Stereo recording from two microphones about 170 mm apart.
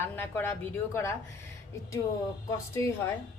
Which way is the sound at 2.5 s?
20° left (ahead or behind).